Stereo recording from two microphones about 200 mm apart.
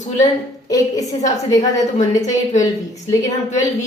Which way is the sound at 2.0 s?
35° left (ahead or behind).